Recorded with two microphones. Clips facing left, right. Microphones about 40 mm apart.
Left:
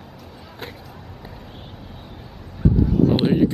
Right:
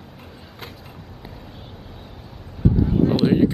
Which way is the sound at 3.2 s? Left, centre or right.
Centre.